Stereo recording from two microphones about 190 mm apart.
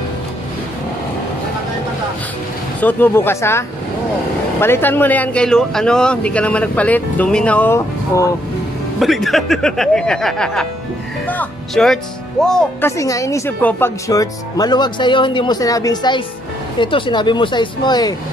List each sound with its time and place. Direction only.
2.8 s speech: 10° left (ahead or behind)
9.0 s speech: centre (ahead or behind)
12.9 s speech: 15° left (ahead or behind)